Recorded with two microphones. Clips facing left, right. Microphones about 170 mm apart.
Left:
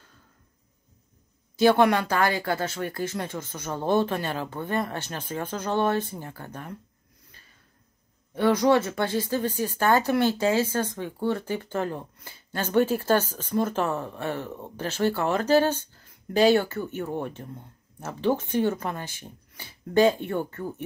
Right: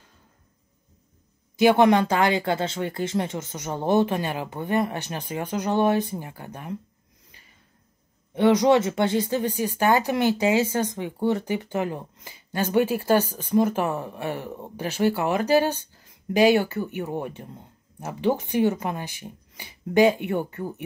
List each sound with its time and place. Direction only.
1.6 s speech: 20° right (ahead or behind)
7.3 s snort: 15° right (ahead or behind)
8.4 s speech: 20° right (ahead or behind)